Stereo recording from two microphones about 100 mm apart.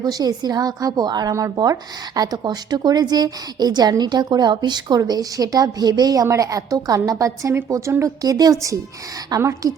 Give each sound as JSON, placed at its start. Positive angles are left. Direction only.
{"t": 0.0, "sound": "a woman's voice", "side_deg": -40}